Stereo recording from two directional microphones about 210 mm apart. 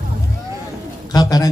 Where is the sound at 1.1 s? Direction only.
20° left (ahead or behind).